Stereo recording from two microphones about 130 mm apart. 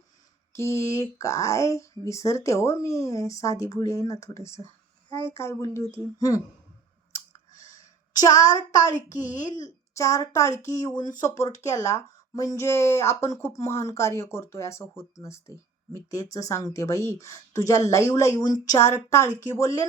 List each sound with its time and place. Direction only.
0.5 s speech: 20° left (ahead or behind)
7.1 s clicking: 25° left (ahead or behind)
9.6 s a child's voice: 25° left (ahead or behind)